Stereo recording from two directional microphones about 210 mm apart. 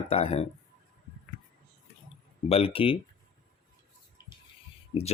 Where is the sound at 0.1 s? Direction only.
30° left (ahead or behind).